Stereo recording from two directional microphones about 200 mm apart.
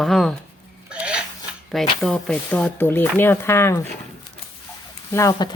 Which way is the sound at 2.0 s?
Centre (ahead or behind).